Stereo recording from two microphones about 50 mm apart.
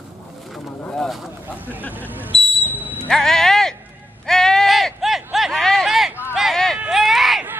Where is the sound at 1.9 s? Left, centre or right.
Right.